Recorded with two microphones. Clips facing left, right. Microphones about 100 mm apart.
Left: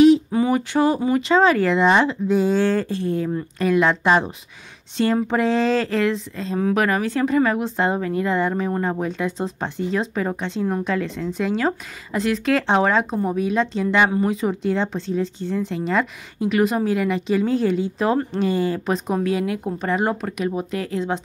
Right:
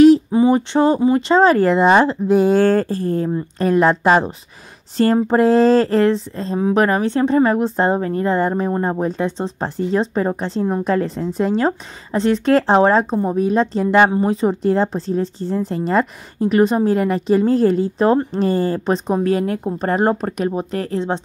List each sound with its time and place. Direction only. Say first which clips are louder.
0.3 s a woman's voice: right 5 dB; 25° right (ahead or behind)
2.3 s a woman's voice: right 6 dB; 55° right (ahead or behind)
14.1 s a woman's voice: right 4 dB; 30° right (ahead or behind)
19.3 s a woman's voice: right 4 dB; 40° right (ahead or behind)